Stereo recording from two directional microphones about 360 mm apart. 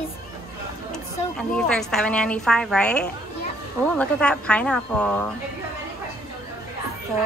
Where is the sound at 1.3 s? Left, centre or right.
Centre.